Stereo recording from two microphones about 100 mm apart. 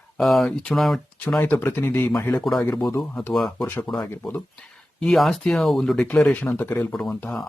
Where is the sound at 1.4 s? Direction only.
20° left (ahead or behind).